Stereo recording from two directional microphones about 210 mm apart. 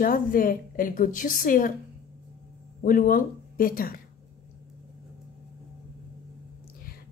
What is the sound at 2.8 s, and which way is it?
Speech, 40° left (ahead or behind).